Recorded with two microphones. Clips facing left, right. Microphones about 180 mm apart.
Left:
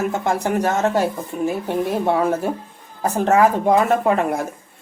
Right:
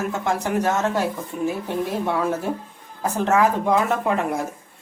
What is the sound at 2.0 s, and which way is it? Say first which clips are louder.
Speech: left 4 dB; 45° left (ahead or behind).